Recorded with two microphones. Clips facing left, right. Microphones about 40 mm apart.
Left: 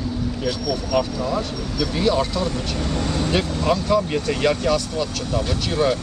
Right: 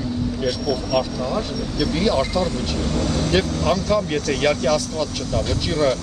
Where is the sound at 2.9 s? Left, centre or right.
Left.